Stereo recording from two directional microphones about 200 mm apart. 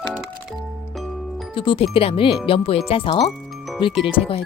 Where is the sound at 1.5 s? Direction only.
25° left (ahead or behind).